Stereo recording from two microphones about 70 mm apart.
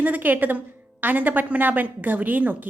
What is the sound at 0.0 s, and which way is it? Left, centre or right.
A woman's voice, right.